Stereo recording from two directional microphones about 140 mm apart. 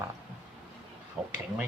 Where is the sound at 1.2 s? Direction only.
Centre (ahead or behind).